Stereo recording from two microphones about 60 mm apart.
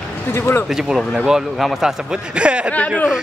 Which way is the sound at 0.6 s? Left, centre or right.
Centre.